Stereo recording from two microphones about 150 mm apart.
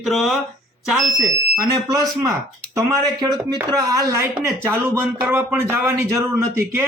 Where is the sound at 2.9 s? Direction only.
25° right (ahead or behind).